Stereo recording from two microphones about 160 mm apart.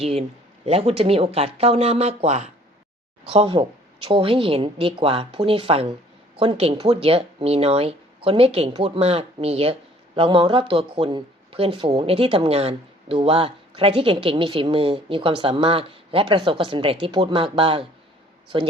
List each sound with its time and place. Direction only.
0.0 s speech: 40° right (ahead or behind)